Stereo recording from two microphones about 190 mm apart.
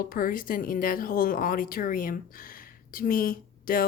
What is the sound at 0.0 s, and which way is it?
Speech, 50° left (ahead or behind).